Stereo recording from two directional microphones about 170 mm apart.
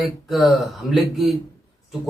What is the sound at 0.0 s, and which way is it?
A man's voice, centre (ahead or behind).